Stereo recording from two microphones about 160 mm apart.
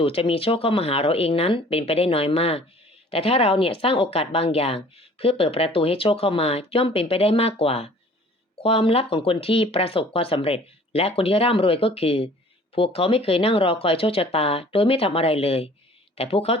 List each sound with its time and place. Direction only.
0.0 s speech: 35° left (ahead or behind)